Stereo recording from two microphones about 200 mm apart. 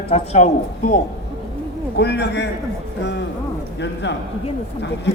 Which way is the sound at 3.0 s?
60° left (ahead or behind).